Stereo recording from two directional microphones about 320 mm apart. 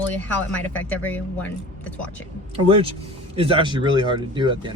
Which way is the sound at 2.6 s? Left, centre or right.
Centre.